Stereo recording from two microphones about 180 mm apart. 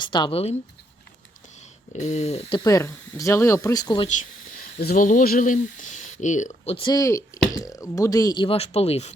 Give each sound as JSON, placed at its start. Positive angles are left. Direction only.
{"t": 0.0, "sound": "speech", "side_deg": 25}
{"t": 1.9, "sound": "speech", "side_deg": 40}
{"t": 2.6, "sound": "speech", "side_deg": 20}
{"t": 4.8, "sound": "speech", "side_deg": 55}
{"t": 6.7, "sound": "speech", "side_deg": 20}